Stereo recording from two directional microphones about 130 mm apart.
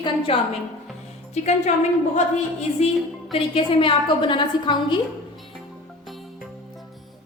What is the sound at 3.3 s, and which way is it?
A woman's voice, 45° left (ahead or behind).